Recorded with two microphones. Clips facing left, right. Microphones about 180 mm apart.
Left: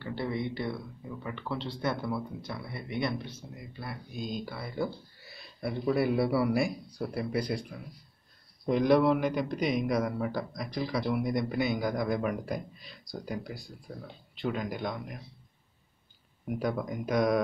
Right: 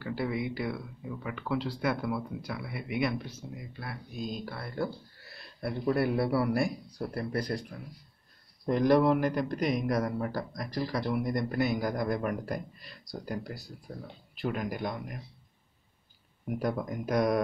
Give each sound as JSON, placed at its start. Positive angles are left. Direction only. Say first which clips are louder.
{"t": 0.0, "sound": "a man's voice", "louder": "right 1 dB", "side_deg": -5}
{"t": 3.1, "sound": "speech", "louder": "right 1 dB", "side_deg": 30}
{"t": 3.5, "sound": "a man's voice", "louder": "even", "side_deg": 0}
{"t": 8.6, "sound": "a man's voice", "louder": "even", "side_deg": 0}
{"t": 16.4, "sound": "a man's voice", "louder": "even", "side_deg": 0}